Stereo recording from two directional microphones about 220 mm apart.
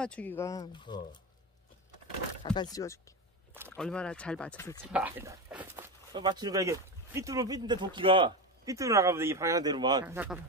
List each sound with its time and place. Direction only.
0.0 s speech: 5° left (ahead or behind)
2.4 s speech: 20° left (ahead or behind)
3.7 s speech: 5° left (ahead or behind)
4.8 s speech: 5° right (ahead or behind)
6.1 s speech: 20° right (ahead or behind)